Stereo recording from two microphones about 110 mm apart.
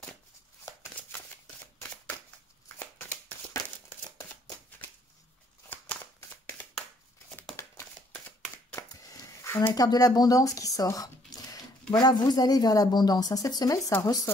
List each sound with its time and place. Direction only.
4.5 s shuffling cards: 15° left (ahead or behind)
7.5 s a sound: 20° left (ahead or behind)
9.8 s speech: 35° left (ahead or behind)